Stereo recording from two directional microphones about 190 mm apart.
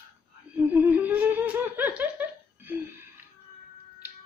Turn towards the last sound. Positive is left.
turn(degrees=-10)  # may be behind; listen again after turning